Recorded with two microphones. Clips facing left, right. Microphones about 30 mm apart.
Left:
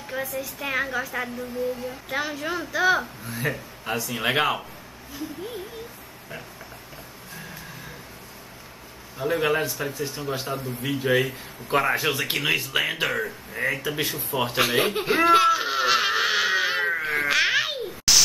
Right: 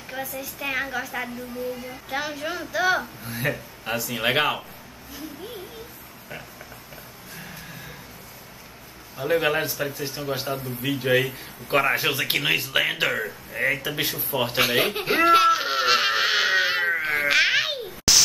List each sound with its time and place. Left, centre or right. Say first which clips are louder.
0.1 s a woman's voice: left 2 dB; centre
9.2 s a man's voice: right 1 dB; centre
10.8 s a man's voice: right 1 dB; centre
14.3 s baby laughter: right 1 dB; centre
18.1 s static: even; centre